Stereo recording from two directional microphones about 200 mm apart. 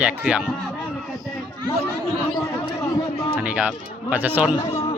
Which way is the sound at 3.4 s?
5° right (ahead or behind).